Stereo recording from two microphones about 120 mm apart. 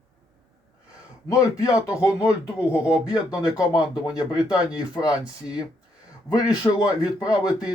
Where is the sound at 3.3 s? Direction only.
5° right (ahead or behind).